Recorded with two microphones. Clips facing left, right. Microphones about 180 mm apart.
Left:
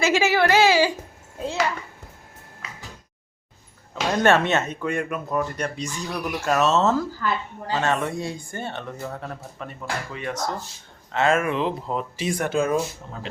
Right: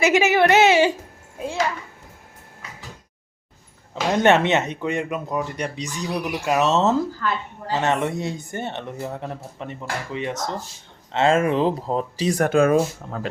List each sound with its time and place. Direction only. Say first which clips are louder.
0.0 s speech: right 3 dB; 20° right (ahead or behind)
4.2 s speech: right 2 dB; 20° right (ahead or behind)
7.2 s a woman's voice: even; 5° left (ahead or behind)
7.7 s speech: right 2 dB; 20° right (ahead or behind); by 12.8 s 60° right (ahead or behind)